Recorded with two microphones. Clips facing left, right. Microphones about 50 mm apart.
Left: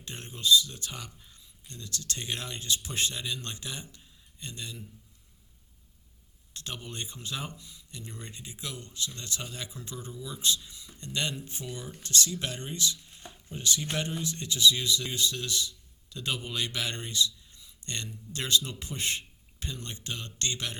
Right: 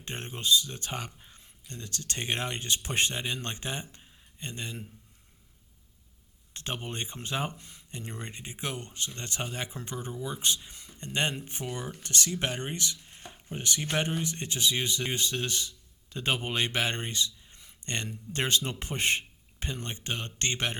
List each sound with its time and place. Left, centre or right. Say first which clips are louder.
0.0 s speech: even; right
3.9 s a sound: right 2 dB; right
6.5 s speech: right 4 dB; right